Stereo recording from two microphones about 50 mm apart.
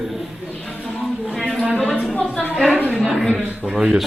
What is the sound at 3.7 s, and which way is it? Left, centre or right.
Speech, centre.